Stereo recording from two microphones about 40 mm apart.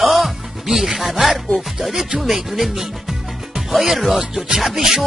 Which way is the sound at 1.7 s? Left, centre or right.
Centre.